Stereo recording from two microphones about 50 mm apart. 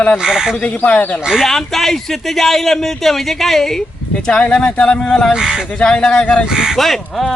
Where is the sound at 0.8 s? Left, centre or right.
Left.